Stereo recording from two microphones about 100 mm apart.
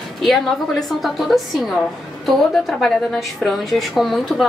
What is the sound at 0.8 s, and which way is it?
A woman's voice, centre (ahead or behind).